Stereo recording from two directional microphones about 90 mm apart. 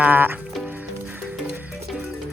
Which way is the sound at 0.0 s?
20° right (ahead or behind).